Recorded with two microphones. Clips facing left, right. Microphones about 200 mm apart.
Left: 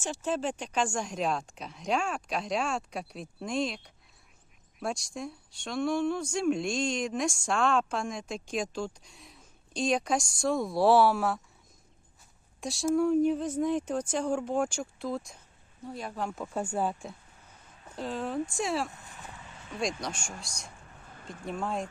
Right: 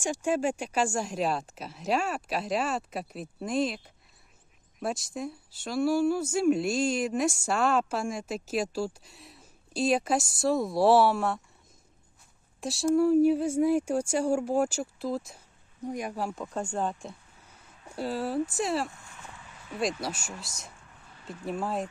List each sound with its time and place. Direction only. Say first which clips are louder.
0.0 s a woman's voice: right 4 dB; 10° right (ahead or behind)
12.5 s speech: right 3 dB; centre (ahead or behind)
15.8 s speech: right 3 dB; 15° right (ahead or behind)
16.3 s a woman's voice: even; centre (ahead or behind)
17.8 s speech: right 3 dB; 10° right (ahead or behind)
18.9 s a sound: even; 20° left (ahead or behind)
19.7 s a woman's voice: right 2 dB; 5° right (ahead or behind)
21.1 s a sound: right 2 dB; 50° left (ahead or behind)
21.4 s a woman's voice: right 2 dB; 5° right (ahead or behind)